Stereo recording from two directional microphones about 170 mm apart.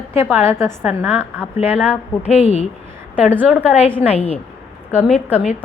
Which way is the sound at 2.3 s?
40° left (ahead or behind).